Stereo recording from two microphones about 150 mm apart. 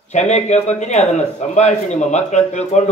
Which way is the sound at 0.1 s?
50° left (ahead or behind).